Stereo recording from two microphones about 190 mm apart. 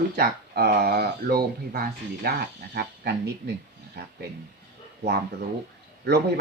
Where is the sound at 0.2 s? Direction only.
55° right (ahead or behind).